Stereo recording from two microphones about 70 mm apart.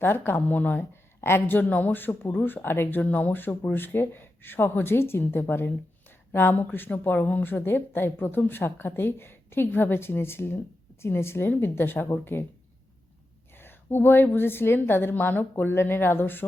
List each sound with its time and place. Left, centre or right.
0.0 s speech: left
13.6 s speech: left